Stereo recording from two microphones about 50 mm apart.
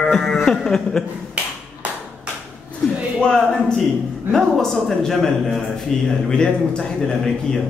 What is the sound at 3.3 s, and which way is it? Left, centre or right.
A man's voice, centre.